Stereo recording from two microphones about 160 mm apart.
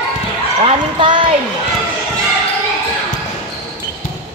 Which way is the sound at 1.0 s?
30° right (ahead or behind).